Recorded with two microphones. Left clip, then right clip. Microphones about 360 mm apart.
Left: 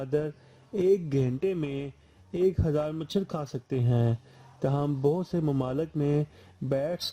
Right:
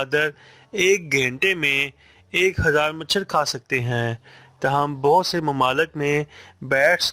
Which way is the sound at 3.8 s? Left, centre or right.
Right.